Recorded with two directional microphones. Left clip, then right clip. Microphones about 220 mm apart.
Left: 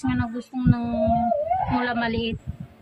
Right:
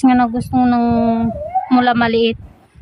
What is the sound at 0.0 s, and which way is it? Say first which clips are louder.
A woman's voice: right 14 dB; 50° right (ahead or behind).